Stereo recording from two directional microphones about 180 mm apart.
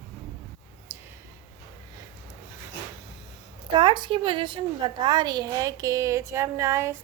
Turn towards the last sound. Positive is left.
turn(degrees=-15)  # may be behind; listen again after turning